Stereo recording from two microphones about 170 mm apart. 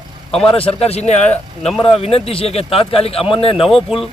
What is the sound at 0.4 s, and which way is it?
Speech, 35° left (ahead or behind).